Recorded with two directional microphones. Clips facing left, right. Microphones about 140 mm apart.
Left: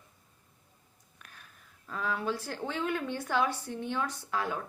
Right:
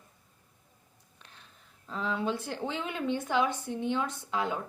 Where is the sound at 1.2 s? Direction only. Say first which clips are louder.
Left 1 dB; 25° right (ahead or behind).